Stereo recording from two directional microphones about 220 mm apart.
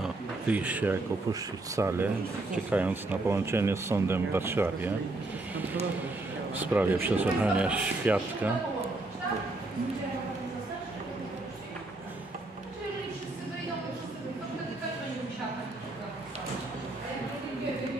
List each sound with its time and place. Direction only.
0.0 s speech: 5° right (ahead or behind)
6.5 s speech: 10° right (ahead or behind)